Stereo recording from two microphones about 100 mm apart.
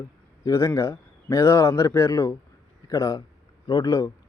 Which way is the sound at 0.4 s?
35° left (ahead or behind).